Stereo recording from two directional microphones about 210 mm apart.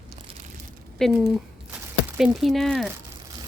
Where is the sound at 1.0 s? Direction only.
Centre (ahead or behind).